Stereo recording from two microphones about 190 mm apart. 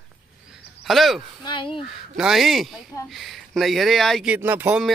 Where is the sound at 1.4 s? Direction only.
25° left (ahead or behind).